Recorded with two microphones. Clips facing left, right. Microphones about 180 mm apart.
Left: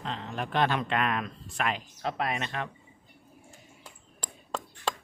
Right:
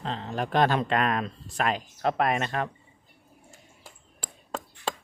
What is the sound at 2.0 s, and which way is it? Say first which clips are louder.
Speech: right 7 dB; 55° right (ahead or behind).